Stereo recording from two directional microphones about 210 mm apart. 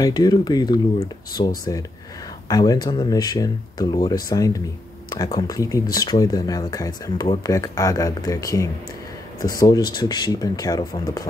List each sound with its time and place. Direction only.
0.0 s speech: 20° left (ahead or behind)